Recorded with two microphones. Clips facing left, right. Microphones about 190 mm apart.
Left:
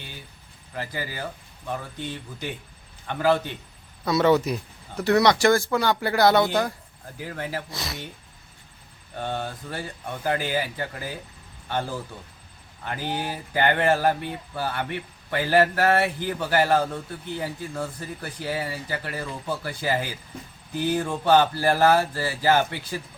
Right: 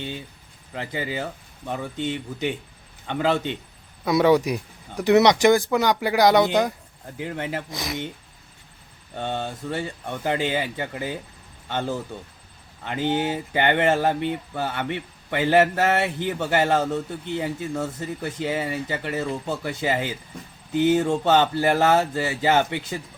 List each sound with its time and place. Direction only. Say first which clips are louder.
0.8 s speech: right 3 dB; 20° right (ahead or behind)
4.0 s speech: right 2 dB; 10° right (ahead or behind)
9.1 s speech: right 2 dB; 20° right (ahead or behind)
12.8 s speech: right 6 dB; 20° right (ahead or behind)